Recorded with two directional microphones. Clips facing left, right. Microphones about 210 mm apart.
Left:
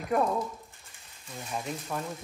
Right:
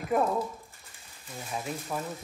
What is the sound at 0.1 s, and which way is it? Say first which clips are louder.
Speech: even; 5° right (ahead or behind).